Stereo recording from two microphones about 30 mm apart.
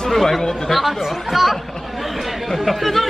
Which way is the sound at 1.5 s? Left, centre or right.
Centre.